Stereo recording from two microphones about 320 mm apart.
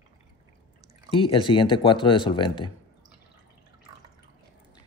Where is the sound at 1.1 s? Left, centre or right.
Centre.